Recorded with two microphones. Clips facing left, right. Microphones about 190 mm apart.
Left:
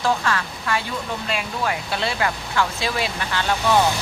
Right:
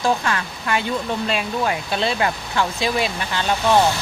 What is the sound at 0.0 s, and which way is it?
Speech, 20° right (ahead or behind).